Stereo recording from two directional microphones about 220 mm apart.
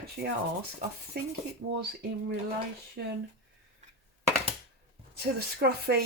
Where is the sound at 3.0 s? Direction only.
50° right (ahead or behind).